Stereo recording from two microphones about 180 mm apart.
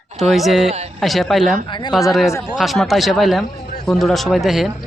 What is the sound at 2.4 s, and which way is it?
Speech, centre (ahead or behind).